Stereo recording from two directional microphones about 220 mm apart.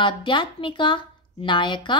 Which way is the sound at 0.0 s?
20° left (ahead or behind).